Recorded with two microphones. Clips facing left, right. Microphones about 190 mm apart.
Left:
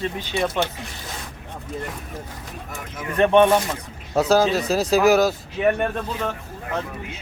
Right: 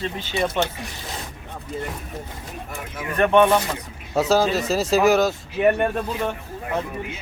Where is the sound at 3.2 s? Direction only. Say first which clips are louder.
Left 2 dB; 20° left (ahead or behind).